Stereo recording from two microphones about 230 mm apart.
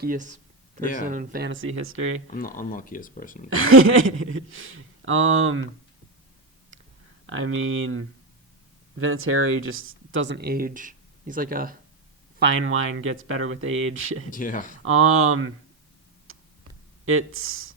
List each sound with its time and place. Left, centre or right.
0.0 s speech: right
1.5 s speech: right
2.3 s speech: left
3.5 s speech: right
7.3 s speech: right
12.4 s speech: right
14.3 s speech: left
14.8 s speech: right
16.3 s tick: right
17.1 s speech: right